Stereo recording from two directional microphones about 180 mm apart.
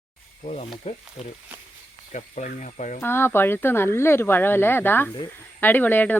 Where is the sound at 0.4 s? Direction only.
55° left (ahead or behind).